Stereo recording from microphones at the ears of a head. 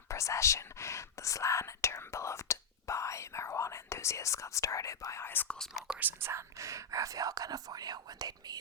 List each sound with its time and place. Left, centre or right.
0.1 s speech: left
6.0 s speech: right